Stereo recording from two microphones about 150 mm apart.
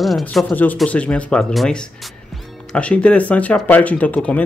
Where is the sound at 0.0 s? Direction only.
Centre (ahead or behind).